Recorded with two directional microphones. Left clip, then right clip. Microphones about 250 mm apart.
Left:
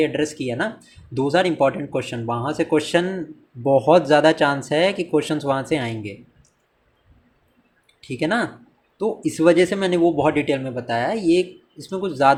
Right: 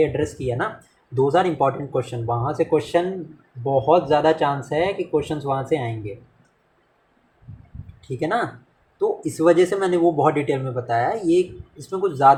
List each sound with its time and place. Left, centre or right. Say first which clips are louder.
0.0 s speech: even; left
8.2 s speech: left 1 dB; left